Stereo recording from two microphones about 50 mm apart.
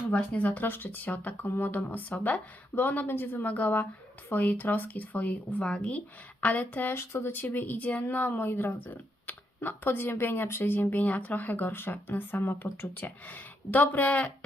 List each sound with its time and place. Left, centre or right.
0.2 s speech: left
0.7 s speech: left
1.4 s speech: left
6.4 s speech: left
6.9 s speech: left
7.3 s speech: left